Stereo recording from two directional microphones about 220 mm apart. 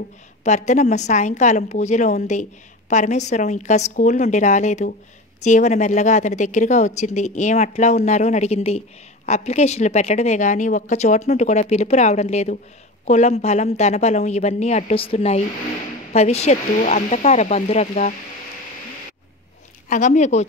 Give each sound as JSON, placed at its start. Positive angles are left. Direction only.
{"t": 0.4, "sound": "a woman's voice", "side_deg": 30}
{"t": 19.9, "sound": "a woman's voice", "side_deg": 35}